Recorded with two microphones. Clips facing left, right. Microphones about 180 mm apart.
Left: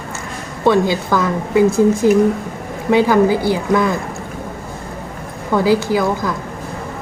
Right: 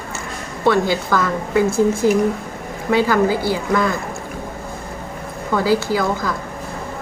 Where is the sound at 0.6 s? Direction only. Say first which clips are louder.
Left 2 dB; 15° left (ahead or behind).